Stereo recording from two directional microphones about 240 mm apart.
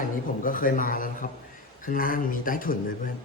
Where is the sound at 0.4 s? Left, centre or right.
Left.